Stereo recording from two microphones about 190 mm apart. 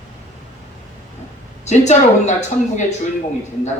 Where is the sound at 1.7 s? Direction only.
35° left (ahead or behind).